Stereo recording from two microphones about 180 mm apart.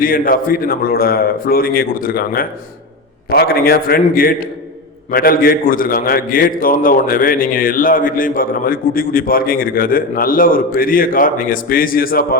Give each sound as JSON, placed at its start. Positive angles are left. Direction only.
{"t": 0.0, "sound": "a man's voice", "side_deg": 50}